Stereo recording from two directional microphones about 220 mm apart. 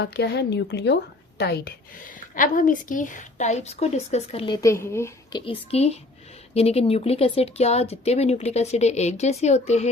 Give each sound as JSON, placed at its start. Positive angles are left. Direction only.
{"t": 0.0, "sound": "speech", "side_deg": 50}
{"t": 5.5, "sound": "speech", "side_deg": 30}